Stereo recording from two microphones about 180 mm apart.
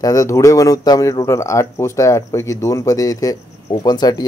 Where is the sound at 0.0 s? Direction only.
20° left (ahead or behind).